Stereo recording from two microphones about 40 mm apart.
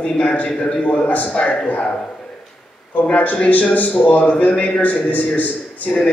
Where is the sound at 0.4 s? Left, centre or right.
Left.